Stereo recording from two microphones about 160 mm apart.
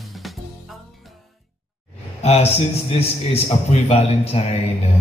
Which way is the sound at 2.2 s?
40° left (ahead or behind).